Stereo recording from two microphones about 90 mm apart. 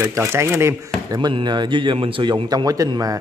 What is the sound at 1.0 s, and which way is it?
A man's voice, 50° right (ahead or behind).